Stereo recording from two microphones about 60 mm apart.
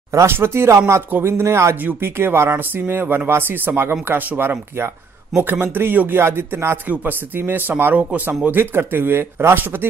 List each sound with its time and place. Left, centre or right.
0.1 s speech: right
0.7 s a sound: right
1.1 s speech: right
1.8 s speech: right
6.9 s speech: right
8.0 s speech: right
8.5 s speech: right